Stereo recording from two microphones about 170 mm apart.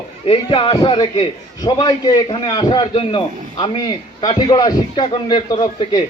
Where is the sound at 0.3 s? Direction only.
30° left (ahead or behind).